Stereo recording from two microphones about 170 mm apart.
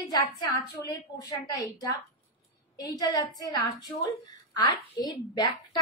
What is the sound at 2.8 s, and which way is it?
A woman's voice, 20° left (ahead or behind).